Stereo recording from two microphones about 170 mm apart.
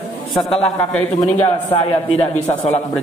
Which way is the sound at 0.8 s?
5° left (ahead or behind).